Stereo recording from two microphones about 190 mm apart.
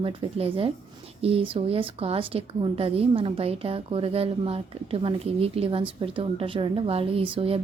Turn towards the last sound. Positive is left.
turn(degrees=-30)  # may be behind; listen again after turning